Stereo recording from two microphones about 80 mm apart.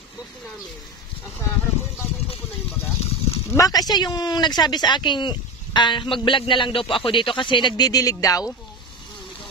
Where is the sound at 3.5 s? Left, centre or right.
Left.